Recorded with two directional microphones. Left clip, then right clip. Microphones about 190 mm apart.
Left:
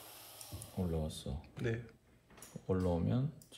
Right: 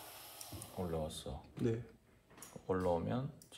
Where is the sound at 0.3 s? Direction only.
30° left (ahead or behind).